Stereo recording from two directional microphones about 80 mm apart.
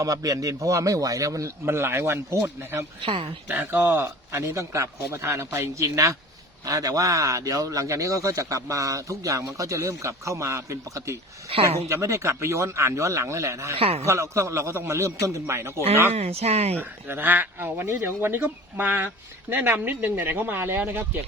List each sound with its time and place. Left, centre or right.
0.0 s a man's voice: right
1.6 s speech: right
3.0 s speech: right
3.5 s speech: right